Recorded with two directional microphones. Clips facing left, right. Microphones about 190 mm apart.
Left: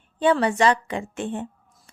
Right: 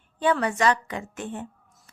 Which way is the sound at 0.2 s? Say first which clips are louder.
Left 4 dB; 25° left (ahead or behind).